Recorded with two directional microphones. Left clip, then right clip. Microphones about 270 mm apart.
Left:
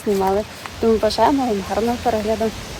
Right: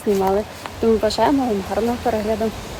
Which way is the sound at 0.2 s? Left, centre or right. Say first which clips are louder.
Even; centre.